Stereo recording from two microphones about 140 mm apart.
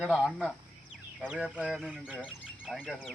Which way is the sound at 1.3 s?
5° right (ahead or behind).